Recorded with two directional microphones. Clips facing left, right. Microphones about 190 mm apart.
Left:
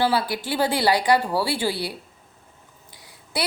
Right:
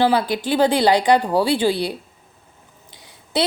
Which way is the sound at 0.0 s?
20° right (ahead or behind).